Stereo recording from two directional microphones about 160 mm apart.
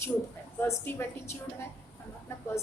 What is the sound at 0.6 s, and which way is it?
Speech, 15° left (ahead or behind).